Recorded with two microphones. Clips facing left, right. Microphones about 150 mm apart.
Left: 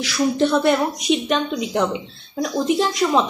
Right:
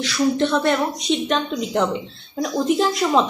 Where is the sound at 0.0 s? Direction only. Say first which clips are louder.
Even; 5° left (ahead or behind).